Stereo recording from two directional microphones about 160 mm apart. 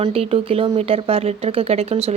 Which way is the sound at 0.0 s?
40° right (ahead or behind).